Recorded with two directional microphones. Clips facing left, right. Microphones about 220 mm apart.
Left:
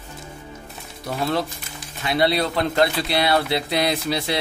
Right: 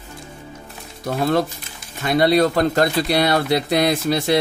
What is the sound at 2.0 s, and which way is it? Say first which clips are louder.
Speech: right 5 dB; 45° right (ahead or behind).